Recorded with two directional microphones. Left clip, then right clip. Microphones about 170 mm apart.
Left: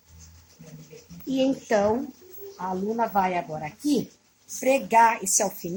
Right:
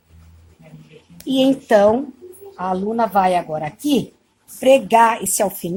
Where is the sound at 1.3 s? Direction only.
40° right (ahead or behind).